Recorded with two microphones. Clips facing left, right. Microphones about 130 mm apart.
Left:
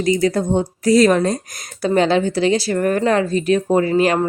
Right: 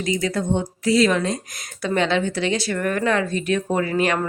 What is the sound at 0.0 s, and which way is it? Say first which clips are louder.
Speech: left 6 dB; 35° left (ahead or behind).